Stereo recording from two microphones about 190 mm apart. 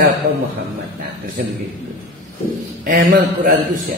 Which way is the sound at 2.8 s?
50° right (ahead or behind).